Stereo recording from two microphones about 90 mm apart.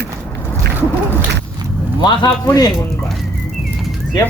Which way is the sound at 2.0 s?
50° left (ahead or behind).